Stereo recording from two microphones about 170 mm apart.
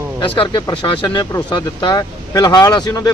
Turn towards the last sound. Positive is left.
turn(degrees=20)  # may be behind; listen again after turning